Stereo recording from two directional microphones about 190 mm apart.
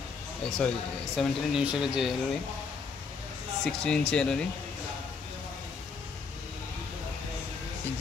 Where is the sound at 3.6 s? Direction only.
5° left (ahead or behind).